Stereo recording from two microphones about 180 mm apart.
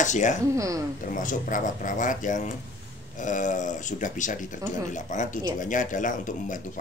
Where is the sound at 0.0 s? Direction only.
45° left (ahead or behind).